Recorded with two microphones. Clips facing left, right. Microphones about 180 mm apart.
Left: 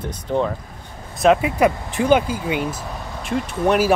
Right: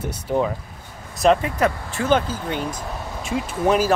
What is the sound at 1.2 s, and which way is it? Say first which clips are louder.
Speech: left 2 dB; 5° left (ahead or behind).